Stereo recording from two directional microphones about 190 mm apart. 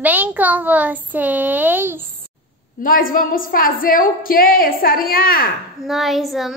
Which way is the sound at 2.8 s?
50° left (ahead or behind).